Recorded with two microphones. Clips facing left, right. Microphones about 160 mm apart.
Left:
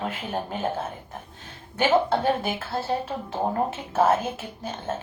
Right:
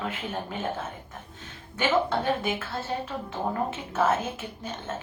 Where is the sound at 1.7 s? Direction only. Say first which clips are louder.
Left 4 dB; 35° left (ahead or behind).